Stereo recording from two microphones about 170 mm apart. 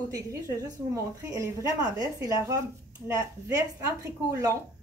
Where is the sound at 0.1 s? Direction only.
15° right (ahead or behind).